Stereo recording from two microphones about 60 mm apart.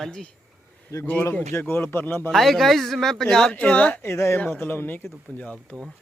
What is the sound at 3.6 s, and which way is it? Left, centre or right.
Speech, left.